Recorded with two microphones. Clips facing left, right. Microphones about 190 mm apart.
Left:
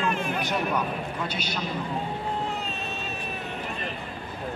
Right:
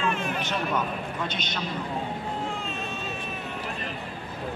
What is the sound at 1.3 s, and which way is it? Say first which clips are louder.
Speech: left 1 dB; 10° left (ahead or behind).